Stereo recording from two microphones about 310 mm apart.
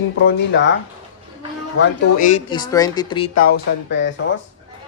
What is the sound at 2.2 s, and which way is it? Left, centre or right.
Speech, centre.